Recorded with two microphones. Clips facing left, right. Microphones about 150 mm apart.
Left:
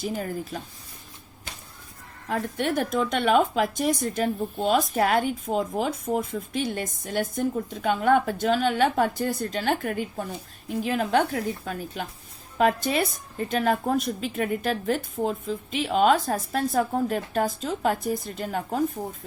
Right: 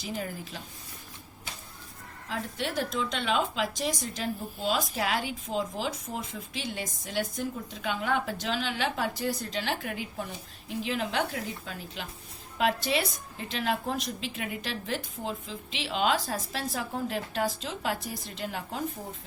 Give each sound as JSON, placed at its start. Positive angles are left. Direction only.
{"t": 0.0, "sound": "a woman's voice", "side_deg": 45}
{"t": 2.3, "sound": "a woman's voice", "side_deg": 50}